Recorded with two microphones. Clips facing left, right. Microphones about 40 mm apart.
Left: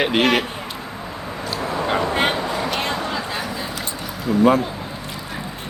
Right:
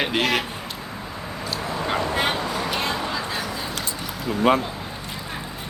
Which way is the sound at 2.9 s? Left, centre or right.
Centre.